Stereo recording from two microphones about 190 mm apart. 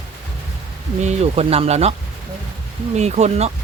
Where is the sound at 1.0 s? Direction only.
35° right (ahead or behind).